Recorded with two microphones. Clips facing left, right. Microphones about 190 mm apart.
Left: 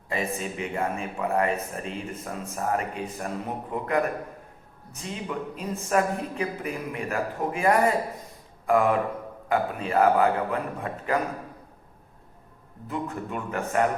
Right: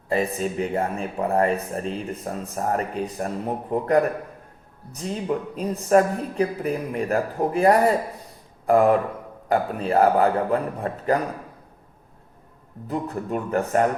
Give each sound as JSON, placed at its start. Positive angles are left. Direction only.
{"t": 0.1, "sound": "speech", "side_deg": -35}
{"t": 5.5, "sound": "speech", "side_deg": -35}
{"t": 12.9, "sound": "speech", "side_deg": -35}